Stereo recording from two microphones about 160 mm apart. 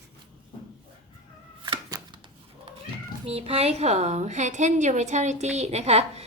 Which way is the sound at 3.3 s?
40° right (ahead or behind).